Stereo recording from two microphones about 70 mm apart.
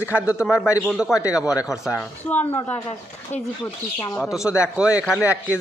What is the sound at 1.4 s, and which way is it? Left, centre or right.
Speech, left.